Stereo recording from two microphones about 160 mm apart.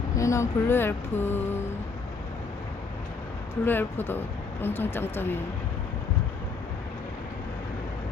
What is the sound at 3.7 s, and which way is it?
Music, 15° left (ahead or behind).